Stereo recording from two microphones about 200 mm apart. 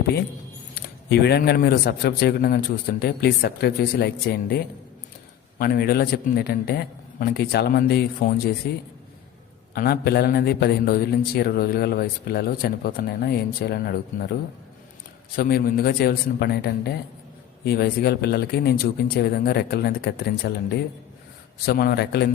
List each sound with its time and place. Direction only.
1.1 s a man's voice: 55° left (ahead or behind)
15.4 s a man's voice: 50° left (ahead or behind)